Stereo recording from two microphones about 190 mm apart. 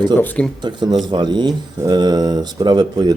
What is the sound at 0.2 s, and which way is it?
Speech, 5° left (ahead or behind).